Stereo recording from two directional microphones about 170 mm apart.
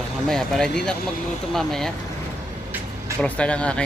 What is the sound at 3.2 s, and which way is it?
Speech, 10° left (ahead or behind).